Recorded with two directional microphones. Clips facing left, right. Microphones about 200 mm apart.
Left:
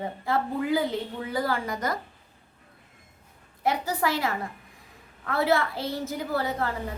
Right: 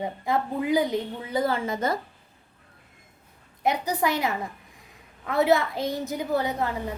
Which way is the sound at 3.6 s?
20° right (ahead or behind).